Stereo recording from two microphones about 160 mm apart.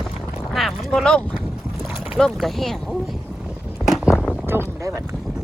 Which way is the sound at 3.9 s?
5° right (ahead or behind).